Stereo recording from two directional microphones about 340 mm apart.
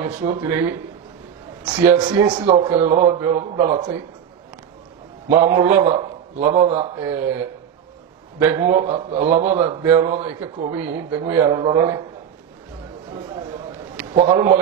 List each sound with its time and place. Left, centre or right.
0.0 s a man's voice: centre
1.9 s a man's voice: centre
5.3 s a man's voice: centre
8.4 s a man's voice: centre
8.8 s a man's voice: centre
9.8 s a man's voice: centre
14.1 s a man's voice: centre